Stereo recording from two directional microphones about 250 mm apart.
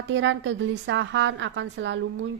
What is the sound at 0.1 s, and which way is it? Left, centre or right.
A woman's voice, right.